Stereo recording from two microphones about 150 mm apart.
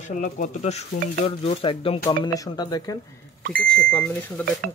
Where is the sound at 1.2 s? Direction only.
40° left (ahead or behind).